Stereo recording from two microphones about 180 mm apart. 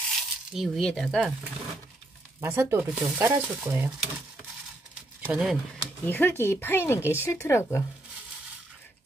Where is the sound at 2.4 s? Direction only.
15° right (ahead or behind).